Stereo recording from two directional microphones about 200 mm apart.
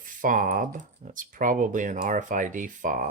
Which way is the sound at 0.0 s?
40° right (ahead or behind).